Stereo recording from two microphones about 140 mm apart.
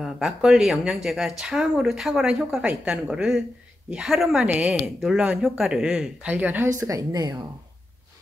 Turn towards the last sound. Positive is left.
turn(degrees=-25)  # may be behind; listen again after turning